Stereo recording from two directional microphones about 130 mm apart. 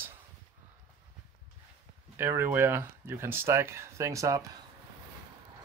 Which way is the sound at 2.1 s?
20° right (ahead or behind).